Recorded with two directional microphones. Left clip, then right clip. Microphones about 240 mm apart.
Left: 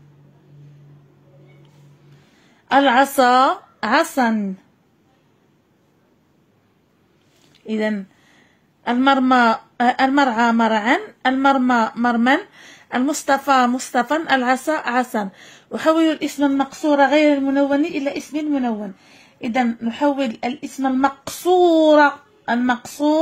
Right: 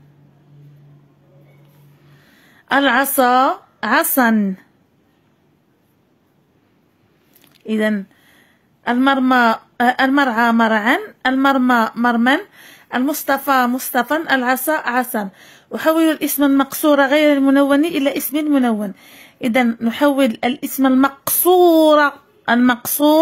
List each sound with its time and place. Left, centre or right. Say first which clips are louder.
2.4 s a woman's voice: even; centre
3.3 s speech: right 2 dB; centre
3.8 s a woman's voice: right 2 dB; centre
7.6 s a woman's voice: right 3 dB; centre; by 23.1 s right